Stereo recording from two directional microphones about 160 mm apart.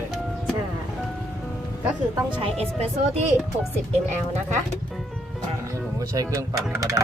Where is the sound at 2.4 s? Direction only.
40° right (ahead or behind).